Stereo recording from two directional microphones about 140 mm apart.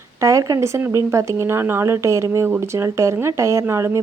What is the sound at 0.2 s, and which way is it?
Speech, 20° right (ahead or behind).